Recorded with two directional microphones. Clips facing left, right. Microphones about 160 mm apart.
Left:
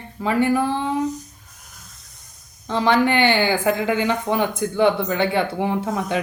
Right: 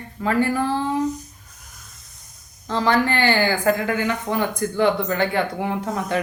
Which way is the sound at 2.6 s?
20° left (ahead or behind).